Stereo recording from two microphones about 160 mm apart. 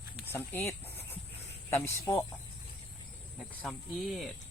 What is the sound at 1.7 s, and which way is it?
Speech, 15° left (ahead or behind).